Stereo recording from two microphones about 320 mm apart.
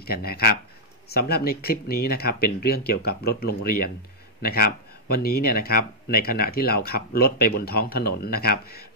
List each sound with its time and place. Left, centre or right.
0.0 s speech: left